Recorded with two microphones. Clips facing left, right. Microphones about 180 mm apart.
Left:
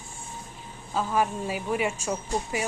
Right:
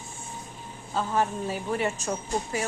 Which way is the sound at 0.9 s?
10° left (ahead or behind).